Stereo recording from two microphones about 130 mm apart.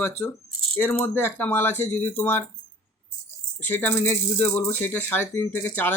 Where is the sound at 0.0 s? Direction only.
15° left (ahead or behind).